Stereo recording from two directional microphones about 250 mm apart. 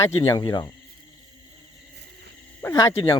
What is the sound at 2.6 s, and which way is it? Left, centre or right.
Speech, centre.